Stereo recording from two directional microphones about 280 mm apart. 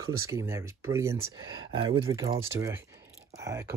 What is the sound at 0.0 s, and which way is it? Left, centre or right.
Speech, centre.